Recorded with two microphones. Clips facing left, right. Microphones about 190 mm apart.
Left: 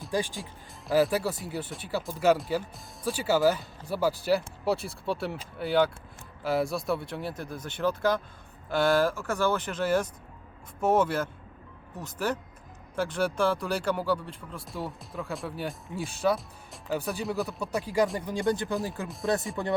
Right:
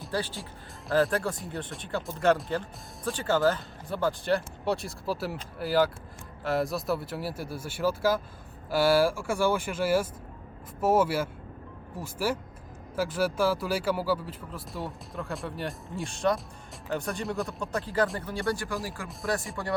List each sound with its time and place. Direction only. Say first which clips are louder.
0.1 s speech: left 2 dB; 15° left (ahead or behind)